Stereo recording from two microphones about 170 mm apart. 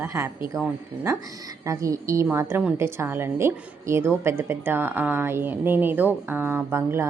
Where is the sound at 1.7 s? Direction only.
20° right (ahead or behind).